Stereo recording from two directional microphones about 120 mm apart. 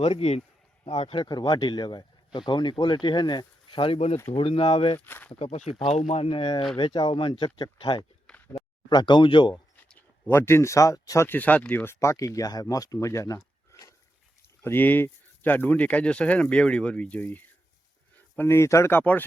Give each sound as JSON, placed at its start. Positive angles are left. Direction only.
{"t": 0.0, "sound": "speech", "side_deg": 55}
{"t": 1.0, "sound": "speech", "side_deg": 40}
{"t": 4.9, "sound": "speech", "side_deg": 15}
{"t": 5.3, "sound": "speech", "side_deg": 60}
{"t": 9.9, "sound": "speech", "side_deg": 15}
{"t": 11.3, "sound": "speech", "side_deg": 15}
{"t": 14.6, "sound": "speech", "side_deg": 15}